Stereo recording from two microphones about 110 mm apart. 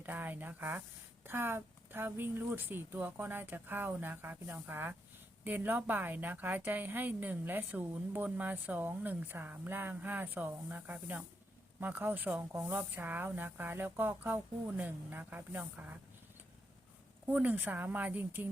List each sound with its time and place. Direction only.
0.0 s a sound: 15° right (ahead or behind)
1.2 s a woman's voice: 20° right (ahead or behind)
17.2 s a woman's voice: 15° right (ahead or behind)